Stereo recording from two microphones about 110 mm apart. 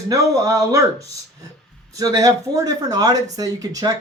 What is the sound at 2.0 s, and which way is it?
Speech, 30° right (ahead or behind).